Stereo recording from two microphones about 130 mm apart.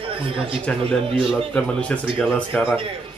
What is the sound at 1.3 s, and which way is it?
Speech, 5° left (ahead or behind).